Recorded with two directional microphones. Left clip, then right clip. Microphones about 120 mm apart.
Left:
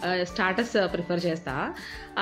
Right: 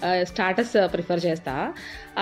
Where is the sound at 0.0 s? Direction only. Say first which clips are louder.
Right 3 dB; 45° right (ahead or behind).